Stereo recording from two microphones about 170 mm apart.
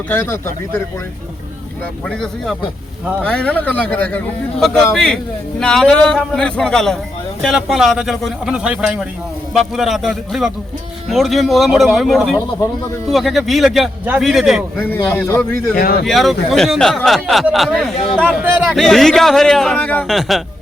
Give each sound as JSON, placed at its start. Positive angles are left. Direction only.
{"t": 0.1, "sound": "speech", "side_deg": 15}
{"t": 2.0, "sound": "a man's voice", "side_deg": 5}
{"t": 14.8, "sound": "speech", "side_deg": 15}
{"t": 15.7, "sound": "speech", "side_deg": 60}
{"t": 16.0, "sound": "a man's voice", "side_deg": 0}
{"t": 17.9, "sound": "speech", "side_deg": 35}
{"t": 18.2, "sound": "speech", "side_deg": -10}
{"t": 18.7, "sound": "a man's voice", "side_deg": 0}